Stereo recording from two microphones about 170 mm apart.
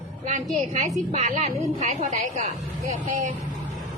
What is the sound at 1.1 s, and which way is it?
A woman's voice, 40° right (ahead or behind).